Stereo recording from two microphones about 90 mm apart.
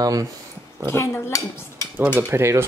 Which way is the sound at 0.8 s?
30° left (ahead or behind).